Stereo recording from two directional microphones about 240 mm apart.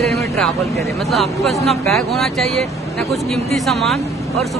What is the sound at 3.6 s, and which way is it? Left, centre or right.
Speech, centre.